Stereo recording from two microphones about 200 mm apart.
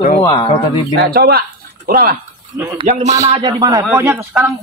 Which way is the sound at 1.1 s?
55° right (ahead or behind).